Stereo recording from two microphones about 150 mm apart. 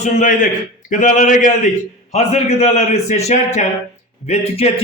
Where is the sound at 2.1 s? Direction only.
50° left (ahead or behind).